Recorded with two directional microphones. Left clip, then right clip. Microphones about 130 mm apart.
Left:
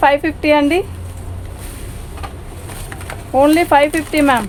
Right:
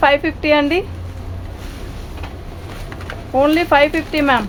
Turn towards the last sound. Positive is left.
turn(degrees=40)  # may be behind; listen again after turning